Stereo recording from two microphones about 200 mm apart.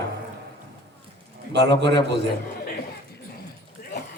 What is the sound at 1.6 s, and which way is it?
Speech, 55° right (ahead or behind).